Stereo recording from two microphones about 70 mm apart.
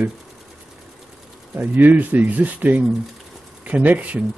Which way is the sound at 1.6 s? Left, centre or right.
Right.